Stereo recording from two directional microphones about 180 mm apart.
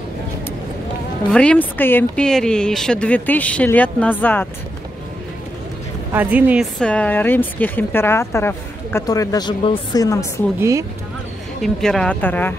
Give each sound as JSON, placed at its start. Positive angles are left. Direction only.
{"t": 1.3, "sound": "speech", "side_deg": 5}
{"t": 6.1, "sound": "a woman's voice", "side_deg": -10}
{"t": 6.8, "sound": "speech", "side_deg": 5}
{"t": 10.6, "sound": "a woman's voice", "side_deg": -15}
{"t": 11.6, "sound": "speech", "side_deg": 5}